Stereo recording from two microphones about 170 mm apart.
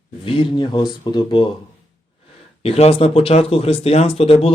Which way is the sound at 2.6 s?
35° left (ahead or behind).